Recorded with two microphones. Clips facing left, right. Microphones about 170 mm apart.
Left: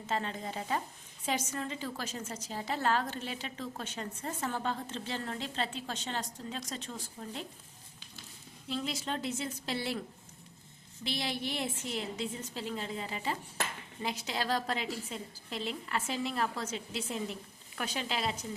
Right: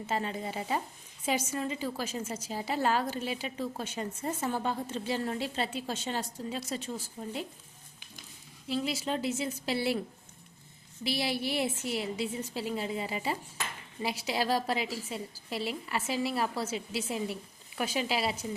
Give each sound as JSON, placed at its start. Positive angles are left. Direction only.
{"t": 0.1, "sound": "a woman's voice", "side_deg": -10}
{"t": 8.7, "sound": "a woman's voice", "side_deg": -5}
{"t": 11.0, "sound": "a woman's voice", "side_deg": -5}